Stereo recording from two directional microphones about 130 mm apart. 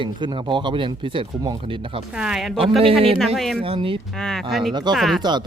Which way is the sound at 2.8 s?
45° right (ahead or behind).